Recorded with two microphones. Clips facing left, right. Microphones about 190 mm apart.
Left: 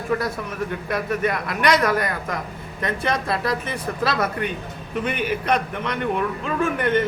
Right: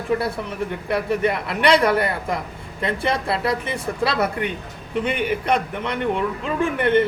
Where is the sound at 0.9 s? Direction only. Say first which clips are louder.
Right 3 dB; 25° right (ahead or behind).